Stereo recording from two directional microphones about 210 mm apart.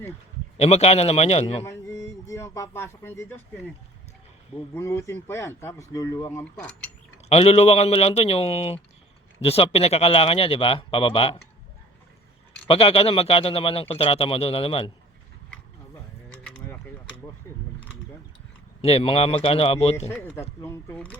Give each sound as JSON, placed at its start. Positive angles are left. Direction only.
{"t": 0.5, "sound": "speech", "side_deg": 30}
{"t": 1.6, "sound": "a sound", "side_deg": 15}
{"t": 4.7, "sound": "speech", "side_deg": 15}
{"t": 7.3, "sound": "speech", "side_deg": 30}
{"t": 12.6, "sound": "speech", "side_deg": 25}
{"t": 16.3, "sound": "a sound", "side_deg": 5}
{"t": 18.8, "sound": "speech", "side_deg": 30}
{"t": 20.6, "sound": "speech", "side_deg": 10}